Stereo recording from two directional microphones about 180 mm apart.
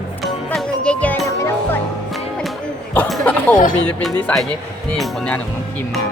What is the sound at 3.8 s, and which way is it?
A woman's voice, 5° left (ahead or behind).